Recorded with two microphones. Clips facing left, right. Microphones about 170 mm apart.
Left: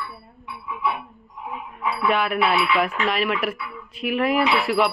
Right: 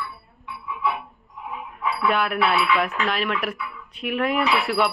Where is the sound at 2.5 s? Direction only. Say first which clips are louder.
Even; 15° left (ahead or behind).